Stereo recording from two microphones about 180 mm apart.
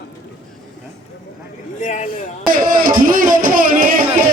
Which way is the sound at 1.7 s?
45° left (ahead or behind).